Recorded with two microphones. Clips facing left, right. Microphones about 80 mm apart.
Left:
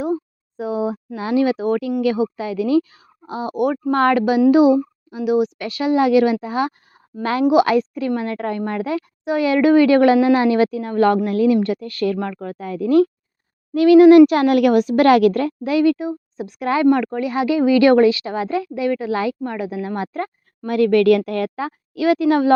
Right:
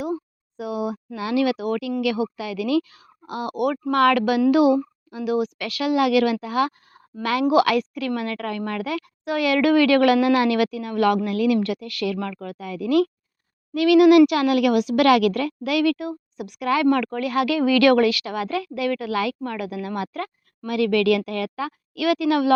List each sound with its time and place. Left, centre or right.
0.0 s a sound: left
2.0 s a woman's voice: left
16.8 s a woman's voice: left